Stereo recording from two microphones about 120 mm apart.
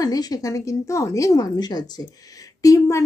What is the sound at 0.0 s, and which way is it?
A woman's voice, 30° left (ahead or behind).